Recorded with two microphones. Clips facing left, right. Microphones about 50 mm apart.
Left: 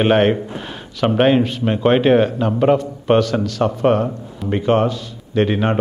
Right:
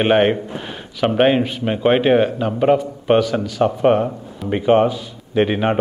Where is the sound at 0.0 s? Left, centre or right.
Centre.